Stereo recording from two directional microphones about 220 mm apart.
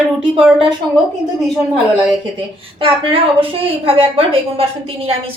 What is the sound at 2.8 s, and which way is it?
A woman's voice, 25° right (ahead or behind).